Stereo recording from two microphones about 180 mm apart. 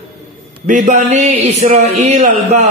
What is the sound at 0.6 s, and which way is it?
A man's voice, 45° right (ahead or behind).